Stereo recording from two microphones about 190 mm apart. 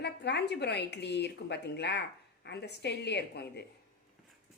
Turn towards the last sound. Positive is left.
turn(degrees=60)  # may be behind; listen again after turning